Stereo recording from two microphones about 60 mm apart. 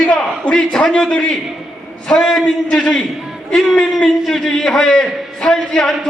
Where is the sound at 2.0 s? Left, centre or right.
Centre.